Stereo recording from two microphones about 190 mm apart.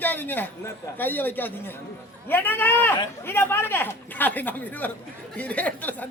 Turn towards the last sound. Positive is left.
turn(degrees=10)  # may be behind; listen again after turning